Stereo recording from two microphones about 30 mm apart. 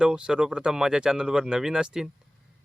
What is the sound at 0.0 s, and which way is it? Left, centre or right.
Speech, right.